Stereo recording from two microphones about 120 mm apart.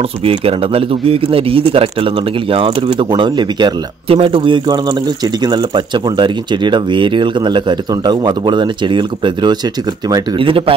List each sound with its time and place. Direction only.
0.2 s a man's voice: 50° right (ahead or behind)